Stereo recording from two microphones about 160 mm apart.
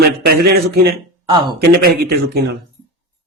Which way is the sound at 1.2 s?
30° right (ahead or behind).